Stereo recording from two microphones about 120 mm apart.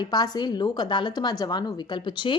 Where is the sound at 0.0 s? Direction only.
35° left (ahead or behind).